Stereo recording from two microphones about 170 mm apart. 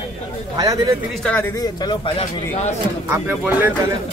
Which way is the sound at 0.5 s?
20° right (ahead or behind).